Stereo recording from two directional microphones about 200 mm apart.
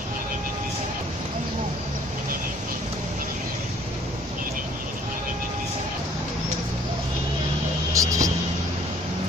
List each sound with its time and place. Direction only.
7.9 s vehicle: 15° right (ahead or behind)